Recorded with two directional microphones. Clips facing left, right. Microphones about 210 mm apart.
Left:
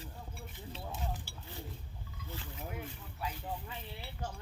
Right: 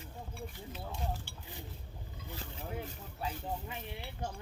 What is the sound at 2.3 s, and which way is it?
Speech, 30° right (ahead or behind).